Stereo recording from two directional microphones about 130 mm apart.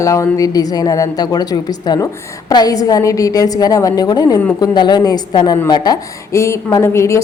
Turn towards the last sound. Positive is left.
turn(degrees=20)  # may be behind; listen again after turning